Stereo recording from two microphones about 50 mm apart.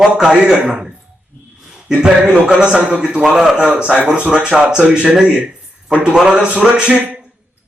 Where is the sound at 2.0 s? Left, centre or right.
Centre.